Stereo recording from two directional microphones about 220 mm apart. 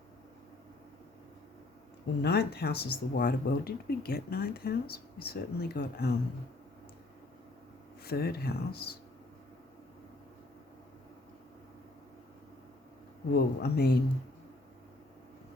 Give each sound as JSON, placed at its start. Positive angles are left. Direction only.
{"t": 2.2, "sound": "speech", "side_deg": 45}
{"t": 8.0, "sound": "speech", "side_deg": 45}
{"t": 13.3, "sound": "speech", "side_deg": 45}